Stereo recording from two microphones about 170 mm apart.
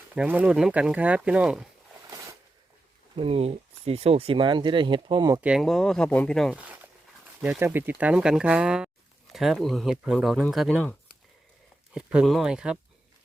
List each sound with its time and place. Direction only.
0.1 s speech: 10° right (ahead or behind)
2.0 s a sound: 20° right (ahead or behind)
3.2 s speech: 35° right (ahead or behind)
5.4 s speech: 5° right (ahead or behind)
7.4 s speech: 10° right (ahead or behind)
11.9 s speech: centre (ahead or behind)